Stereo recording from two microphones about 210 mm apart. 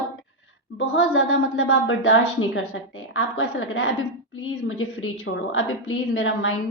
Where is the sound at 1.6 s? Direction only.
60° left (ahead or behind).